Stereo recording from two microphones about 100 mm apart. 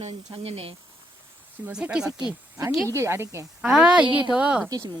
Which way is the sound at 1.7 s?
10° right (ahead or behind).